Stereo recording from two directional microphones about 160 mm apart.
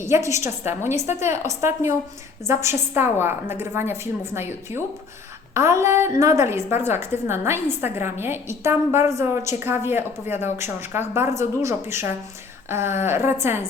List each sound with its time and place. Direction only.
0.0 s a woman's voice: 20° right (ahead or behind)